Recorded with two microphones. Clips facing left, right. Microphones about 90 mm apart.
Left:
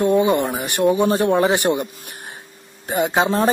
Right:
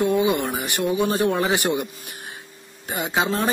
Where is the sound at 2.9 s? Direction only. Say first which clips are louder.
Left 5 dB; 40° left (ahead or behind).